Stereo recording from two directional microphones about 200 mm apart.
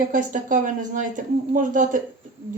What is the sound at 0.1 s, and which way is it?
Speech, 40° right (ahead or behind).